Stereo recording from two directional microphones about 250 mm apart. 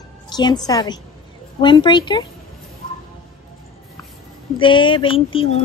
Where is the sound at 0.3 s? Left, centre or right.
Centre.